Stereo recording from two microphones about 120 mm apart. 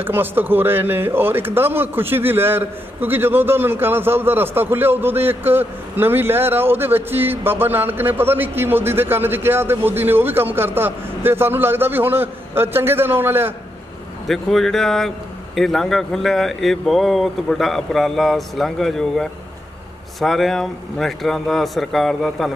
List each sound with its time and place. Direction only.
0.0 s a man's voice: 15° right (ahead or behind)
14.2 s speech: centre (ahead or behind)